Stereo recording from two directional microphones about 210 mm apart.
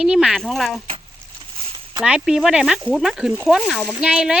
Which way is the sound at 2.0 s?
5° right (ahead or behind).